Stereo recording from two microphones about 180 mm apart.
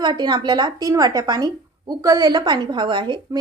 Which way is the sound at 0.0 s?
25° right (ahead or behind).